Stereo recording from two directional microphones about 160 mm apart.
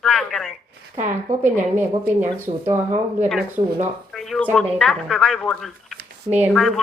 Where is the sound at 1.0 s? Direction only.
50° right (ahead or behind).